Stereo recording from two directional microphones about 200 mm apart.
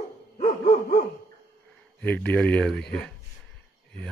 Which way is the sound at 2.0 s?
10° left (ahead or behind).